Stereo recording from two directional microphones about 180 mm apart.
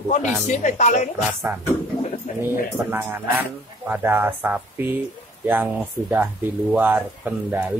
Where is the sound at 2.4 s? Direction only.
10° right (ahead or behind).